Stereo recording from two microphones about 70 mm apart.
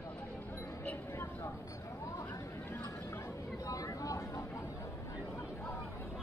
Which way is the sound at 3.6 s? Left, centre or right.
Left.